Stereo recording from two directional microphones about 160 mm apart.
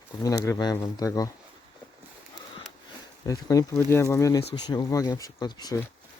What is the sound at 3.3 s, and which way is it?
Speech, 20° left (ahead or behind).